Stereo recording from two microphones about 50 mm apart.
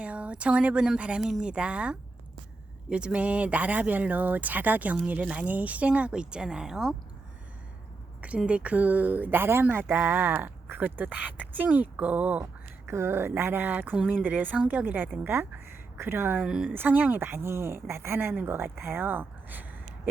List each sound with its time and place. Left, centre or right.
0.0 s speech: right
8.4 s speech: right
12.9 s speech: right
14.1 s speech: right
15.2 s speech: right
16.7 s speech: right
17.2 s speech: right